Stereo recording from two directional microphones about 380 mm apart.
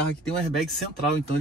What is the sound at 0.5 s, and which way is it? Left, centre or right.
Speech, centre.